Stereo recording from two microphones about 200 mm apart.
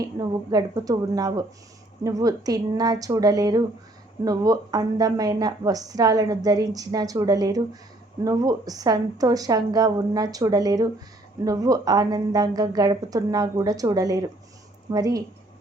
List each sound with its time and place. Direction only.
0.5 s a woman's voice: 20° right (ahead or behind)